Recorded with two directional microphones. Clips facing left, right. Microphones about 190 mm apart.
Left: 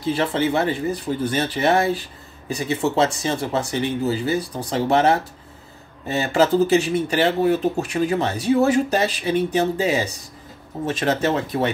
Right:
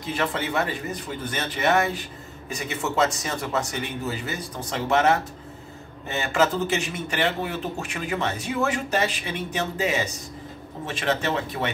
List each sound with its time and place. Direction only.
0.0 s speech: 30° left (ahead or behind)